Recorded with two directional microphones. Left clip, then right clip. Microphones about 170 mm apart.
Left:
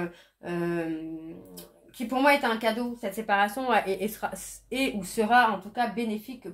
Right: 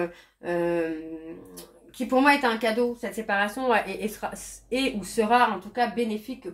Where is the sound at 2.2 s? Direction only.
30° left (ahead or behind).